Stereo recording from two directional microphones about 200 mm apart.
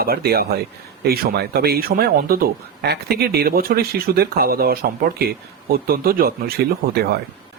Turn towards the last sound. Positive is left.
turn(degrees=-50)  # may be behind; listen again after turning